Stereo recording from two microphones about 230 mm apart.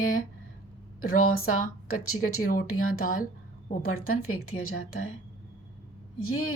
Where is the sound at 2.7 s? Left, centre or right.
Left.